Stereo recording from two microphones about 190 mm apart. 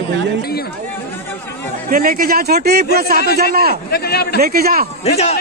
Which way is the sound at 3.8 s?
55° left (ahead or behind).